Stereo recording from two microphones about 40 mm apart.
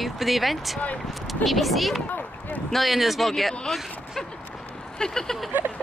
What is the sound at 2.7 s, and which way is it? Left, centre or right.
Speech, centre.